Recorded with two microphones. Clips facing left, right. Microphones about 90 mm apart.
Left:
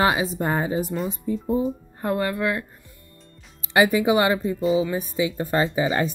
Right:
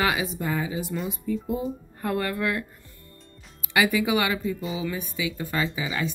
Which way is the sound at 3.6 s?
30° left (ahead or behind).